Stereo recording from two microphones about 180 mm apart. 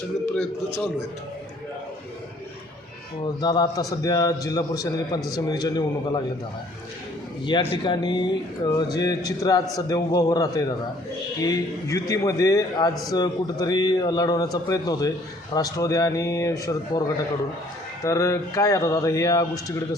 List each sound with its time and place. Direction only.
3.4 s speech: 20° left (ahead or behind)
7.5 s speech: 25° left (ahead or behind)
18.0 s speech: 20° left (ahead or behind)